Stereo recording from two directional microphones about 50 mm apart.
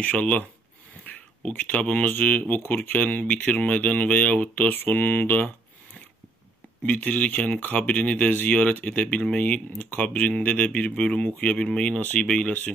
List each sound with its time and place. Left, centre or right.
0.0 s speech: left
1.0 s a sound: left
1.7 s speech: left
6.9 s speech: left
9.0 s speech: centre